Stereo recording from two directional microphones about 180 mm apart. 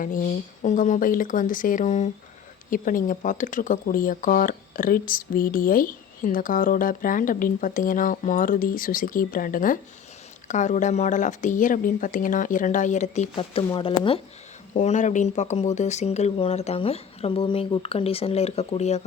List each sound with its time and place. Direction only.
0.0 s speech: 50° left (ahead or behind); by 14.2 s 30° left (ahead or behind)
14.7 s speech: 40° left (ahead or behind)